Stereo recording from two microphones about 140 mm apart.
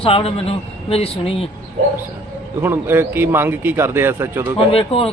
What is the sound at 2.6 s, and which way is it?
A man's voice, 15° right (ahead or behind).